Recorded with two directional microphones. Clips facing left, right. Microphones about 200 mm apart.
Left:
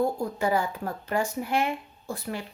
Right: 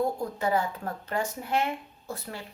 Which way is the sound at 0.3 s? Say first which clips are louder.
Left 1 dB; 10° left (ahead or behind).